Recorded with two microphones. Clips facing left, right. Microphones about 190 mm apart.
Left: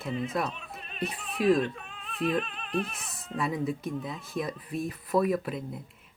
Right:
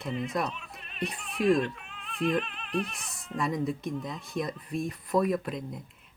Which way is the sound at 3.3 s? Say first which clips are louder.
Even; 5° left (ahead or behind).